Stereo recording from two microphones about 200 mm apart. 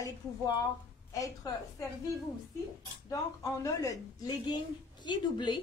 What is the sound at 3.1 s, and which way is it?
Speech, 15° left (ahead or behind).